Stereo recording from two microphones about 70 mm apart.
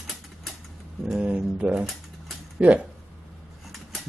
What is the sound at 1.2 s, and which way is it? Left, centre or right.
Speech, centre.